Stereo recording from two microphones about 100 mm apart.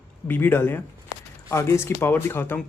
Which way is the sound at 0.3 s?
20° left (ahead or behind).